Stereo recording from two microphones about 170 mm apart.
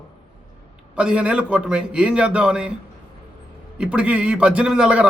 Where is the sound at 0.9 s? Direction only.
5° right (ahead or behind).